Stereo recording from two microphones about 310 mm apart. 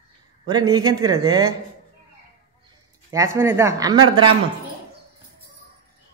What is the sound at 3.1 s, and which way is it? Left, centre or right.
Speech, centre.